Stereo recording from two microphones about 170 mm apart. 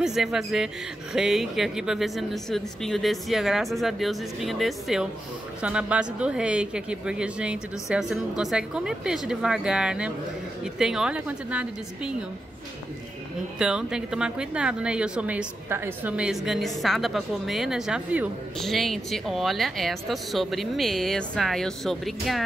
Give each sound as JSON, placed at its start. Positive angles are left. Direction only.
{"t": 0.0, "sound": "a woman's voice", "side_deg": -5}
{"t": 13.6, "sound": "a woman's voice", "side_deg": -5}